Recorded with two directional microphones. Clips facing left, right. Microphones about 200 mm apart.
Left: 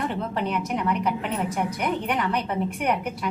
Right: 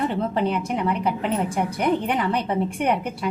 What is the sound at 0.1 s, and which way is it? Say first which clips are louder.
A woman's voice: right 4 dB; 30° right (ahead or behind).